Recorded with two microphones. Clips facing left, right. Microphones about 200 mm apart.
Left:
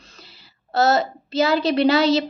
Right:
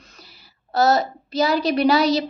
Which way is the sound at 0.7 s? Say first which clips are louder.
Even; 25° left (ahead or behind).